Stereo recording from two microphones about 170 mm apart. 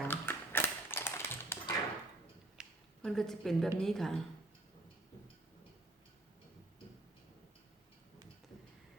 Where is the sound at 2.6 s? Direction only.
Centre (ahead or behind).